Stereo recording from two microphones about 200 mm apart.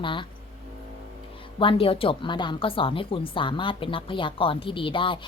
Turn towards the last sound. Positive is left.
turn(degrees=25)  # may be behind; listen again after turning